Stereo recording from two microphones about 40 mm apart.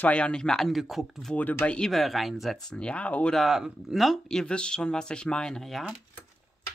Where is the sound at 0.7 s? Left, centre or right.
Centre.